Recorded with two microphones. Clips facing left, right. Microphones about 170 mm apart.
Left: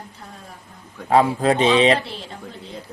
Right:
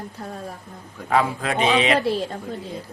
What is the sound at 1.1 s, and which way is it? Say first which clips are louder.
Speech: left 5 dB; 35° left (ahead or behind).